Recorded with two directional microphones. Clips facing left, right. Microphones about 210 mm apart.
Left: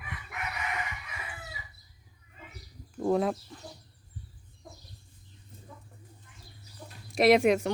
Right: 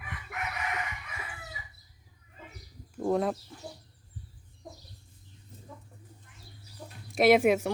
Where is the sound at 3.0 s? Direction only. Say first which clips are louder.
Left 1 dB; centre (ahead or behind).